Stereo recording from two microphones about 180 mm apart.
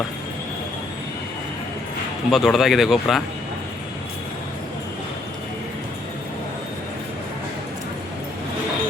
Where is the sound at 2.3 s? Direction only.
Centre (ahead or behind).